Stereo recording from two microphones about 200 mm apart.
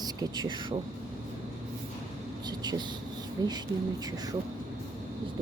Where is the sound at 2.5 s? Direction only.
20° right (ahead or behind).